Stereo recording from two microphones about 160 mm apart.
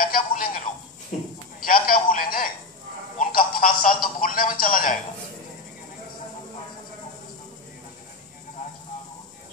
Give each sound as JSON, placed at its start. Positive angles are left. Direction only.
{"t": 0.0, "sound": "telephone", "side_deg": 60}
{"t": 1.1, "sound": "speech", "side_deg": 50}
{"t": 1.6, "sound": "a man's voice", "side_deg": 60}